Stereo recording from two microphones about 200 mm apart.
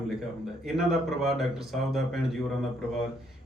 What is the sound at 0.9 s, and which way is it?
Speech, centre (ahead or behind).